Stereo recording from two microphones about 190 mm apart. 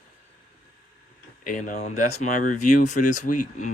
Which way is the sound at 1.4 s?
40° left (ahead or behind).